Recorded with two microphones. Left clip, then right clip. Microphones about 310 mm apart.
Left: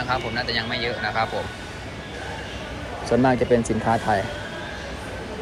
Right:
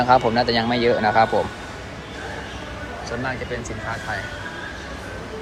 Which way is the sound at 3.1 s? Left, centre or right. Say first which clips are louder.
Left 10 dB; centre.